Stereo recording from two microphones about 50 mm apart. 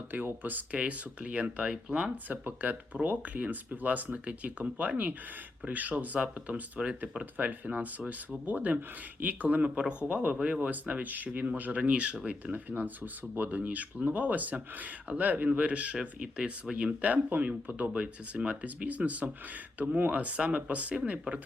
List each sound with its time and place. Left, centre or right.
0.1 s speech: right
0.8 s speech: right
2.2 s speech: right
13.6 s speech: right
16.0 s speech: centre